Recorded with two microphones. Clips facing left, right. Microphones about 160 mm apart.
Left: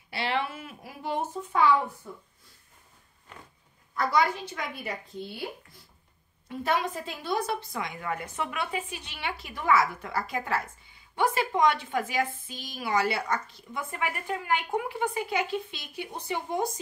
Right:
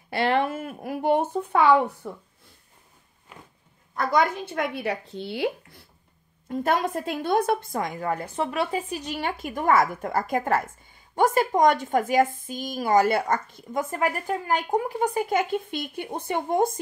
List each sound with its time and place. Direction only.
0.1 s a woman's voice: 50° right (ahead or behind)
3.9 s a woman's voice: 50° right (ahead or behind); by 5.9 s 70° right (ahead or behind)
6.5 s a woman's voice: 45° right (ahead or behind)